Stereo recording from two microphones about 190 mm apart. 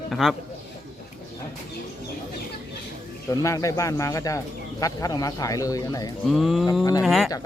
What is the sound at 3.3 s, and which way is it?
Speech, 15° left (ahead or behind).